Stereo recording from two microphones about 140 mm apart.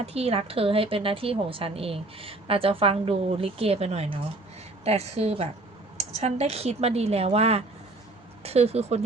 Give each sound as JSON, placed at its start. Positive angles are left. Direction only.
{"t": 0.0, "sound": "a woman's voice", "side_deg": -50}